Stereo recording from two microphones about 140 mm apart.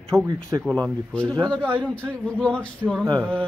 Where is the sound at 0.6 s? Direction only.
5° left (ahead or behind).